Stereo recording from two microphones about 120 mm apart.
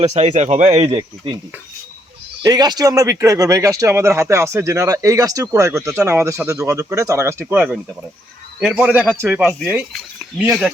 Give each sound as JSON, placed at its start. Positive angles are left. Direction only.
{"t": 0.0, "sound": "speech", "side_deg": -70}
{"t": 0.9, "sound": "speech", "side_deg": -40}
{"t": 2.4, "sound": "speech", "side_deg": -35}
{"t": 10.3, "sound": "speech", "side_deg": -5}